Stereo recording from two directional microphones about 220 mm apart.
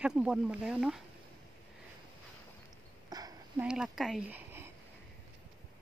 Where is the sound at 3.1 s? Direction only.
15° right (ahead or behind).